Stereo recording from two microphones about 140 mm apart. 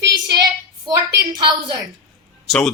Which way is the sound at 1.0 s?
30° right (ahead or behind).